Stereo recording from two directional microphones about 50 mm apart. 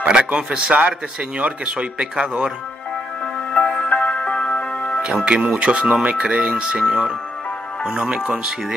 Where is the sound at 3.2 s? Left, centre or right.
Centre.